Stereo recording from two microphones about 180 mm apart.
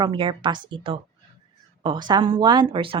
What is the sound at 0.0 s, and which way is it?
Speech, 25° right (ahead or behind).